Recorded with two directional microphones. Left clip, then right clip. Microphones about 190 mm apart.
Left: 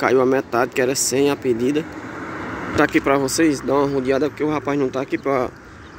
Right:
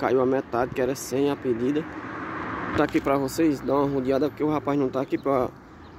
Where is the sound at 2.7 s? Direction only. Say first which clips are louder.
Left 6 dB; centre (ahead or behind).